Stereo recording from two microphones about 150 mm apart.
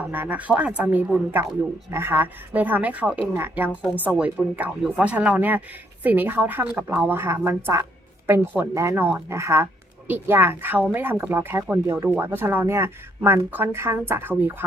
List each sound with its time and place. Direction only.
0.1 s speech: 10° right (ahead or behind)